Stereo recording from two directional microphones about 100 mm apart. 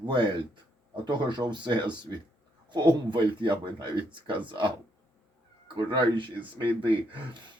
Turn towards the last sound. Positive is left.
turn(degrees=-50)  # may be behind; listen again after turning